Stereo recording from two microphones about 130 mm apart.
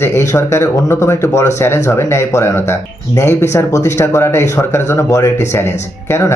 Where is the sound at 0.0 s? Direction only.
20° left (ahead or behind).